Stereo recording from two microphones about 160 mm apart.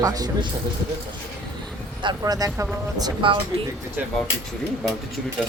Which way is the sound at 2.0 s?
25° right (ahead or behind).